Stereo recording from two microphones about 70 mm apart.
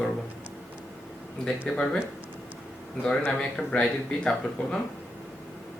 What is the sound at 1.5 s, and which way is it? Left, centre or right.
Speech, centre.